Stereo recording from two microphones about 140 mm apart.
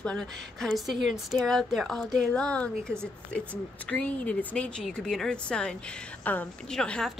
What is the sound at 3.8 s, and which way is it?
Speech, 10° left (ahead or behind).